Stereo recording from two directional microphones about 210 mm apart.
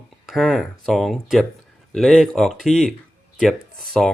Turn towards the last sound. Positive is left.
turn(degrees=0)  # may be behind; listen again after turning